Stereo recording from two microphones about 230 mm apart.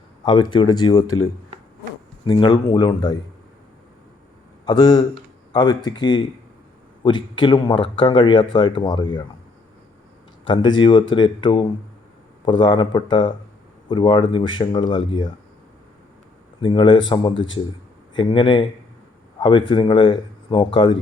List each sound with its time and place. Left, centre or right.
0.3 s speech: centre
1.0 s speech: left
2.2 s speech: centre
4.6 s a man's voice: centre
10.4 s speech: left
16.6 s speech: left